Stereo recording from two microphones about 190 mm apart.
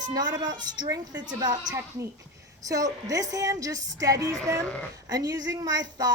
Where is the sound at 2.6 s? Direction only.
20° right (ahead or behind).